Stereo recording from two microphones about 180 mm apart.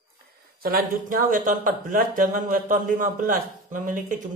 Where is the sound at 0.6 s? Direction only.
55° right (ahead or behind).